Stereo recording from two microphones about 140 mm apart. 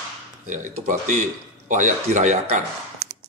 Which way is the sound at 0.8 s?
65° right (ahead or behind).